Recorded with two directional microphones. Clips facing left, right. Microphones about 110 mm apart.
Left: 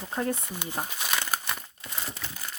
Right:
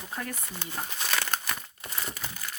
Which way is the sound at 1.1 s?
15° left (ahead or behind).